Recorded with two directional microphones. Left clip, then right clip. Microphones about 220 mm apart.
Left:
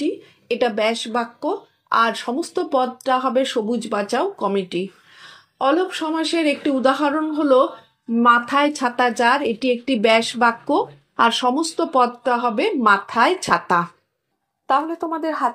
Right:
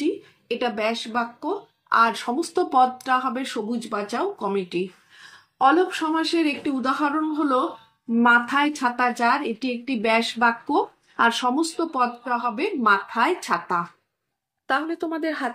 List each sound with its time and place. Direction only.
0.0 s speech: 30° left (ahead or behind)
14.7 s speech: centre (ahead or behind)